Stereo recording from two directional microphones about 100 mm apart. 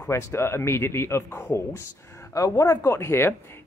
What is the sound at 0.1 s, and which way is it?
Speech, 25° left (ahead or behind).